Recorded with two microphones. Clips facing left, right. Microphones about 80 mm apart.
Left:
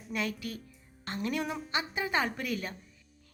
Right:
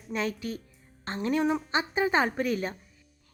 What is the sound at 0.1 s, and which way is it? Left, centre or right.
A woman's voice, right.